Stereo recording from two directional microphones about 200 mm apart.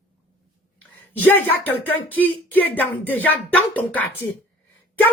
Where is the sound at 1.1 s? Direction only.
10° left (ahead or behind).